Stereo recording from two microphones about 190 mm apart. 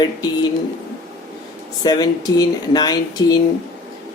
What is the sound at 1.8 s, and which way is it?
Speech, 20° left (ahead or behind).